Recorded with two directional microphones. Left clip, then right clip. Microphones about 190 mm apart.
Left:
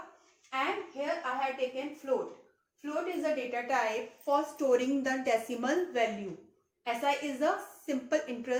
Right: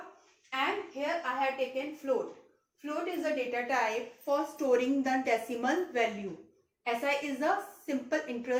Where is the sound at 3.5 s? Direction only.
30° left (ahead or behind).